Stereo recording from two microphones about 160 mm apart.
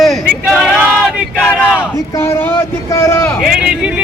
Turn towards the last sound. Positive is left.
turn(degrees=-5)  # may be behind; listen again after turning